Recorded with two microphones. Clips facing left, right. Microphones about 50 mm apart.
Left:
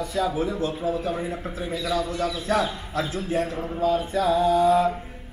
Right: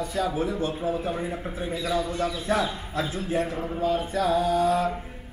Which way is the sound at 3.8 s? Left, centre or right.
Right.